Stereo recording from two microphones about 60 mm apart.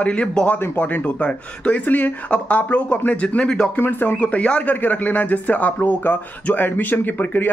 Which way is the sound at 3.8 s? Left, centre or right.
Left.